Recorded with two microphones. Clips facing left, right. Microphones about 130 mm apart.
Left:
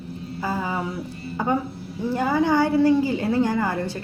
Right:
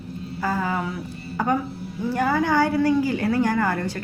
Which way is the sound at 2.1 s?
20° left (ahead or behind).